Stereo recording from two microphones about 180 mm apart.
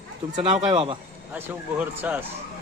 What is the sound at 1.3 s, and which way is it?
Speech, 10° right (ahead or behind).